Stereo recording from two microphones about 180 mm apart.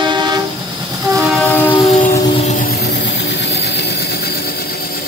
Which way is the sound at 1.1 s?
10° left (ahead or behind).